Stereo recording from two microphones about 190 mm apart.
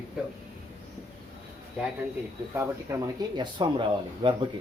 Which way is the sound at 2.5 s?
15° right (ahead or behind).